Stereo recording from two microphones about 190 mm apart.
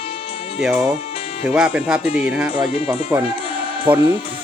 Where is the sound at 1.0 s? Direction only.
30° left (ahead or behind).